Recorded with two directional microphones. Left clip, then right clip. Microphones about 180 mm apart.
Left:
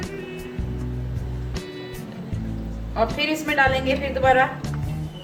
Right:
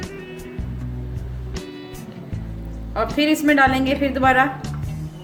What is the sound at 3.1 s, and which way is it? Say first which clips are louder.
A woman's voice: right 7 dB; 60° right (ahead or behind).